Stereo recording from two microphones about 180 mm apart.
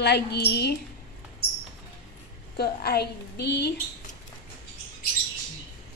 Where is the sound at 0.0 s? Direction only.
65° left (ahead or behind).